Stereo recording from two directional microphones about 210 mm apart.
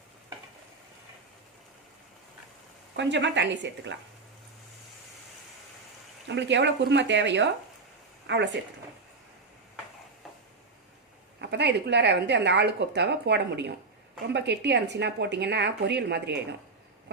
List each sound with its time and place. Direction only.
2.9 s speech: 60° right (ahead or behind)
6.2 s speech: 55° right (ahead or behind)
11.3 s a woman's voice: 55° right (ahead or behind)